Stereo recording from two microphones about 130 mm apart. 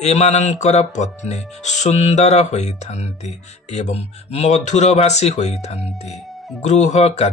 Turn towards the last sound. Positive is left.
turn(degrees=55)  # may be behind; listen again after turning